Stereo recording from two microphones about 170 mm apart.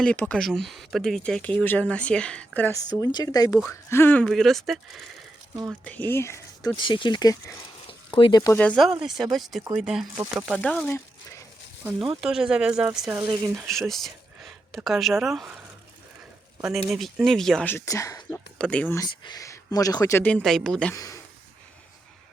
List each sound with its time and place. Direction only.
0.0 s speech: 5° left (ahead or behind)
3.0 s speech: 25° left (ahead or behind)
6.7 s speech: 30° left (ahead or behind)
8.5 s speech: 5° left (ahead or behind)
12.2 s speech: 5° right (ahead or behind)
13.5 s speech: centre (ahead or behind)
16.6 s speech: centre (ahead or behind); by 18.3 s 20° left (ahead or behind)
18.6 s speech: 5° left (ahead or behind)
18.9 s speech: 25° left (ahead or behind); by 20.9 s 5° left (ahead or behind)
20.9 s speech: 20° left (ahead or behind)